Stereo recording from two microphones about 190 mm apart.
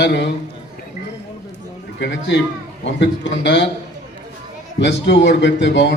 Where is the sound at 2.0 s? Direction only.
65° left (ahead or behind).